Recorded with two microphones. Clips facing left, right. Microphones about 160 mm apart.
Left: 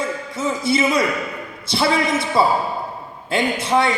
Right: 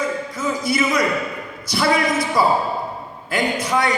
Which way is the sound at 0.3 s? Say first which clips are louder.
Left 3 dB; 25° left (ahead or behind).